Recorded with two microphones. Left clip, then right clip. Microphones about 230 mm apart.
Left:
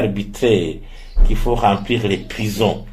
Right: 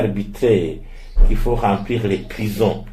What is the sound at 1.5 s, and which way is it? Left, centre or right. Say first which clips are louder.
Speech: left 3 dB; left.